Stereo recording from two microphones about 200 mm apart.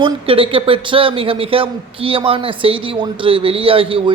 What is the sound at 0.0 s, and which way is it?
A man's voice, 25° right (ahead or behind).